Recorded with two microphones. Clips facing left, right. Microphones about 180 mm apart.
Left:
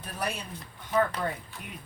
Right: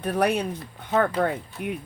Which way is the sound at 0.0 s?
60° right (ahead or behind).